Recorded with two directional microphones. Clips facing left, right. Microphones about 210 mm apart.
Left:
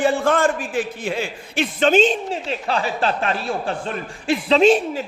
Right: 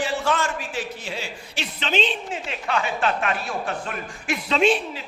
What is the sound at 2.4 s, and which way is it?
Speech, 35° left (ahead or behind).